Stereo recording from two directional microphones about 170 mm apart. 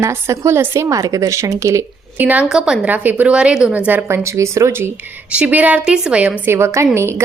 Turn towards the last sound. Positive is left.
turn(degrees=-15)  # may be behind; listen again after turning